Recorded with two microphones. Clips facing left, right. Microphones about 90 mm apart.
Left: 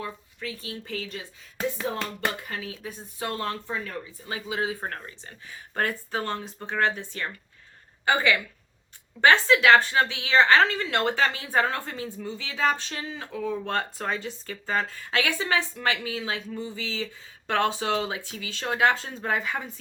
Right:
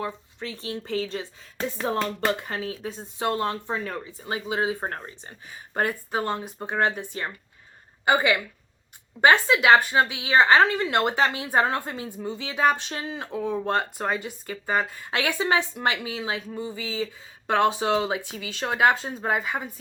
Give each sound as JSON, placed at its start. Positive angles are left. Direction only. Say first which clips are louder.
{"t": 0.0, "sound": "speech", "louder": "right 3 dB", "side_deg": -30}
{"t": 2.5, "sound": "a woman's voice", "louder": "right 4 dB", "side_deg": -30}